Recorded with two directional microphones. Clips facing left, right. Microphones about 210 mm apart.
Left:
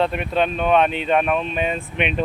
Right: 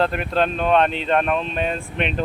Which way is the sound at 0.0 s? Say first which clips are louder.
Even; centre (ahead or behind).